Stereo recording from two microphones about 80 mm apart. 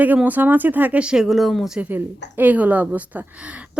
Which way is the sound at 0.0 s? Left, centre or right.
Centre.